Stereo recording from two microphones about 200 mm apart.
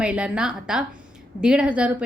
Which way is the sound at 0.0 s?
5° right (ahead or behind).